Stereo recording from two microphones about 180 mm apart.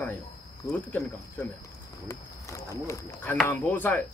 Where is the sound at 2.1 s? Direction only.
15° left (ahead or behind).